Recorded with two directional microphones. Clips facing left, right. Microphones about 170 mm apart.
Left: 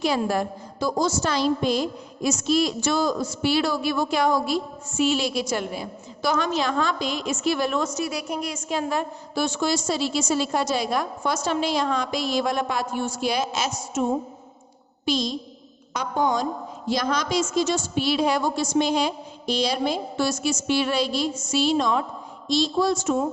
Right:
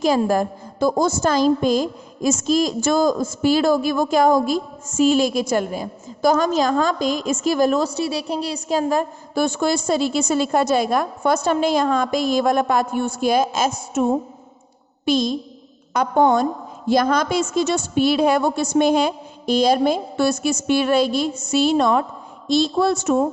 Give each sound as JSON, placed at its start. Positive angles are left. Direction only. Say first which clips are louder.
{"t": 0.0, "sound": "a woman's voice", "louder": "right 5 dB", "side_deg": -45}
{"t": 15.0, "sound": "a woman's voice", "louder": "right 6 dB", "side_deg": -55}